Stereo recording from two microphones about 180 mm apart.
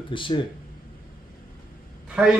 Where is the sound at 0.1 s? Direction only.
25° left (ahead or behind).